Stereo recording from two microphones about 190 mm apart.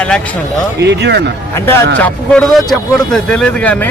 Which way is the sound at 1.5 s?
15° left (ahead or behind).